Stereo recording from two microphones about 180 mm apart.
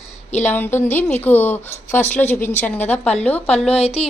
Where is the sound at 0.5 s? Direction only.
10° left (ahead or behind).